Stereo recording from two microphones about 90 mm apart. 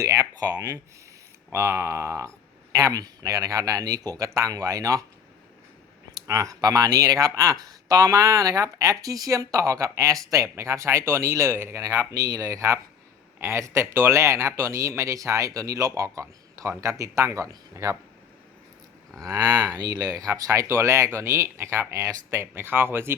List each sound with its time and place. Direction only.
0.0 s speech: 35° right (ahead or behind)
0.3 s speech: 45° right (ahead or behind)
1.5 s speech: 30° right (ahead or behind)
6.1 s speech: 35° right (ahead or behind)
12.1 s speech: 45° right (ahead or behind)
19.2 s speech: 45° right (ahead or behind); by 23.1 s 25° right (ahead or behind)